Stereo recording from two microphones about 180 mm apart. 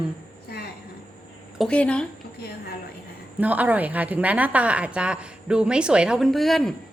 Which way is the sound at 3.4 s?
10° right (ahead or behind).